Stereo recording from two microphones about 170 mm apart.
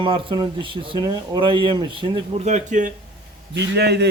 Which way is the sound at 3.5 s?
80° right.